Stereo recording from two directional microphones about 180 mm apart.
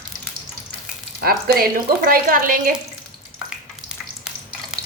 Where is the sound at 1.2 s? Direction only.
55° right (ahead or behind).